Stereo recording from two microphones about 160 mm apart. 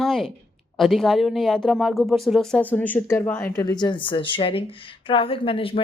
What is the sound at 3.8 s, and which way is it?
A woman's voice, 30° left (ahead or behind).